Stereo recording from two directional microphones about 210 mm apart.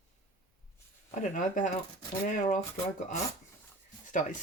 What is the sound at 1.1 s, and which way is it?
Speech, 35° left (ahead or behind).